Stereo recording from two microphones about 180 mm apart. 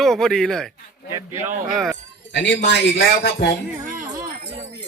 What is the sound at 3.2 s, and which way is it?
Music, 70° left (ahead or behind).